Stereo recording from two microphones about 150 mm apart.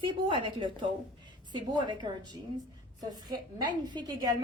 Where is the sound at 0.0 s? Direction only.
35° right (ahead or behind).